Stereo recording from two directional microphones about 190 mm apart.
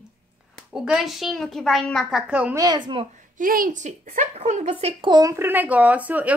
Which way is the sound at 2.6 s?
25° right (ahead or behind).